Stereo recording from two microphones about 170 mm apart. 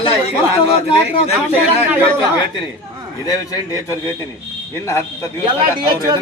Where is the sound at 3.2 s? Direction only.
20° left (ahead or behind).